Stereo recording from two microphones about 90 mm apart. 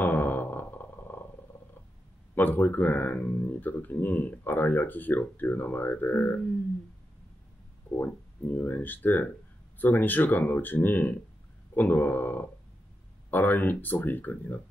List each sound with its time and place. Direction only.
0.0 s a sound: 20° left (ahead or behind)
2.3 s speech: 20° left (ahead or behind)
7.9 s speech: 20° left (ahead or behind)